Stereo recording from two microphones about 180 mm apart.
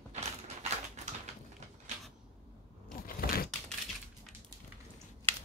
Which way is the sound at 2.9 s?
55° left (ahead or behind).